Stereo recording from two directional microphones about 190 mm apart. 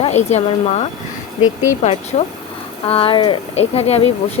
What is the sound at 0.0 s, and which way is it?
Speech, 35° left (ahead or behind).